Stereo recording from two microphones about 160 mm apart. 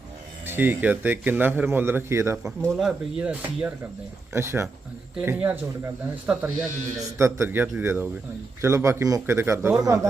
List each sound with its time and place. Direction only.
0.4 s a man's voice: 15° right (ahead or behind)
2.6 s a man's voice: centre (ahead or behind); by 10.1 s 20° right (ahead or behind)